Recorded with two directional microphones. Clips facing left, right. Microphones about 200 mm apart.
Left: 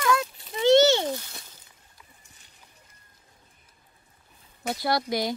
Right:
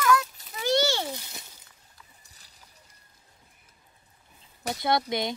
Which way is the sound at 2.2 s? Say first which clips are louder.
Left 1 dB; 35° right (ahead or behind).